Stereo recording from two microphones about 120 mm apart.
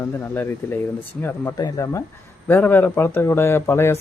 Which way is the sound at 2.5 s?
15° left (ahead or behind).